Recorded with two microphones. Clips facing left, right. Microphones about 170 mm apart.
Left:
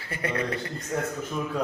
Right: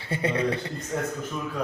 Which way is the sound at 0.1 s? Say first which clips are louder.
Right 4 dB; 25° right (ahead or behind).